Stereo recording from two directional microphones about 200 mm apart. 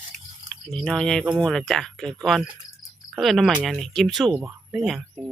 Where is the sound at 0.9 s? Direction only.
5° left (ahead or behind).